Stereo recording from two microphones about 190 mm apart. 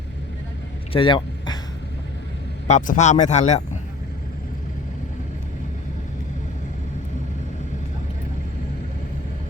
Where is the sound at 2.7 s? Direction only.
40° left (ahead or behind).